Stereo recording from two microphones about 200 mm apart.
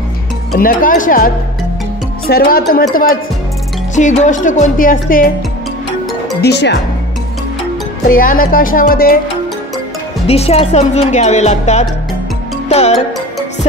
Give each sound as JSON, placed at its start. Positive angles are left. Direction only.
{"t": 0.6, "sound": "speech", "side_deg": 45}
{"t": 6.4, "sound": "speech", "side_deg": 55}
{"t": 8.1, "sound": "speech", "side_deg": 45}
{"t": 10.2, "sound": "speech", "side_deg": 30}
{"t": 12.6, "sound": "music", "side_deg": 35}